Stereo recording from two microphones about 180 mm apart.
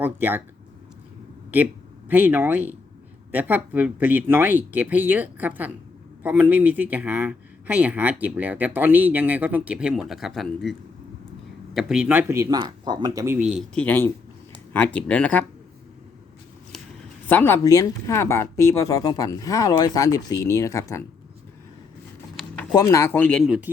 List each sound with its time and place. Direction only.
0.0 s speech: 10° right (ahead or behind)
2.0 s speech: 10° right (ahead or behind)
13.7 s speech: 10° left (ahead or behind)
17.2 s speech: 10° left (ahead or behind)
22.7 s speech: 15° left (ahead or behind); by 23.6 s centre (ahead or behind)